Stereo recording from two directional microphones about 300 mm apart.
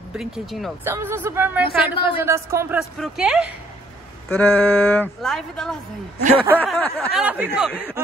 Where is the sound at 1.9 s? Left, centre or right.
Centre.